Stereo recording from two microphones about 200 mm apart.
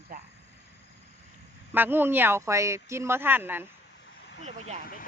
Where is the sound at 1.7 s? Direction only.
10° right (ahead or behind).